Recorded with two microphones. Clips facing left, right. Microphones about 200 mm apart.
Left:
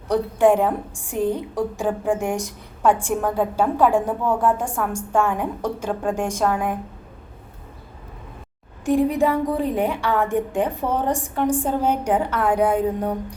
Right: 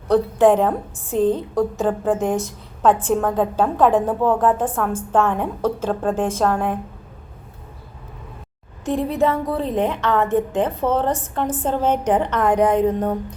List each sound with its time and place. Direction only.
0.1 s a woman's voice: 10° left (ahead or behind)
8.8 s a woman's voice: 15° left (ahead or behind)